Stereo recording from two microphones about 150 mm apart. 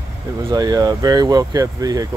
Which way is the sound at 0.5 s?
25° right (ahead or behind).